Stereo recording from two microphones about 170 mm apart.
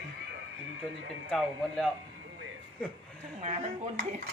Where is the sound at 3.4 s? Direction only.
40° right (ahead or behind).